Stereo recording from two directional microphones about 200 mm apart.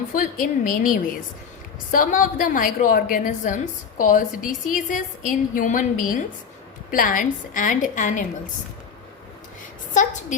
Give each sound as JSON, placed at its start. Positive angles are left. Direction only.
{"t": 0.1, "sound": "a woman's voice", "side_deg": 45}
{"t": 9.9, "sound": "a woman's voice", "side_deg": 40}